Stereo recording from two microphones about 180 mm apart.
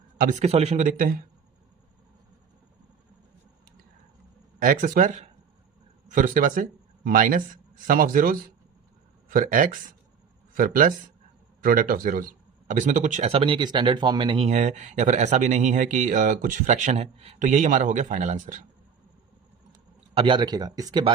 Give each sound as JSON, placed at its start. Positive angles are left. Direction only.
{"t": 0.2, "sound": "speech", "side_deg": -45}
{"t": 4.6, "sound": "speech", "side_deg": -50}
{"t": 20.1, "sound": "speech", "side_deg": -25}